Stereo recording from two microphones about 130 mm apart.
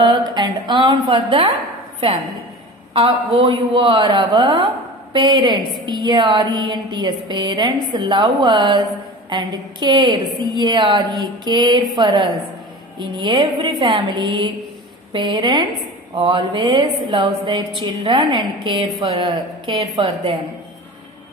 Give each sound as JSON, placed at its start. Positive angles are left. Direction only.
{"t": 0.0, "sound": "a woman's voice", "side_deg": -35}
{"t": 3.1, "sound": "a woman's voice", "side_deg": -35}